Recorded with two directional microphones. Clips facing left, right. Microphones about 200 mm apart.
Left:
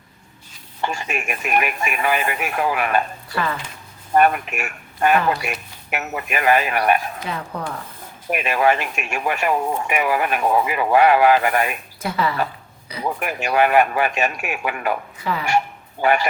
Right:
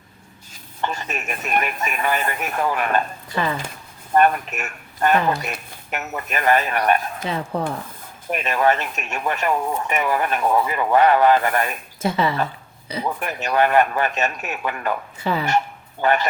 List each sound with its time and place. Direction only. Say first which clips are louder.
0.8 s speech: left 1 dB; 10° left (ahead or behind)
3.3 s stir: right 1 dB; 20° right (ahead or behind)
4.1 s speech: left 1 dB; 10° left (ahead or behind)
7.3 s stir: right 4 dB; 25° right (ahead or behind)
8.3 s speech: left 1 dB; 10° left (ahead or behind)
12.0 s stir: right 2 dB; 20° right (ahead or behind)
13.1 s speech: left 3 dB; 10° left (ahead or behind)
15.2 s stir: right 2 dB; 30° right (ahead or behind)
15.4 s a sound: left 1 dB; 10° left (ahead or behind)